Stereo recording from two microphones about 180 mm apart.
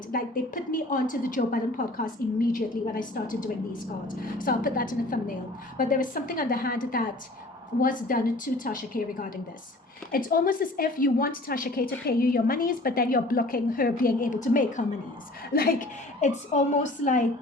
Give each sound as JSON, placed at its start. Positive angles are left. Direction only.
{"t": 0.1, "sound": "a woman's voice", "side_deg": 50}
{"t": 10.1, "sound": "a woman's voice", "side_deg": 50}